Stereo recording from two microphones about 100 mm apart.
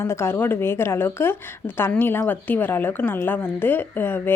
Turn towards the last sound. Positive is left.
turn(degrees=20)  # may be behind; listen again after turning